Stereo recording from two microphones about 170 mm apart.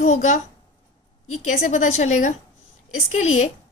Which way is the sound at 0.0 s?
45° left (ahead or behind).